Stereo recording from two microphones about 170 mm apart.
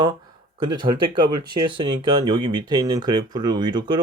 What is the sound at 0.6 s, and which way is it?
Speech, 25° right (ahead or behind).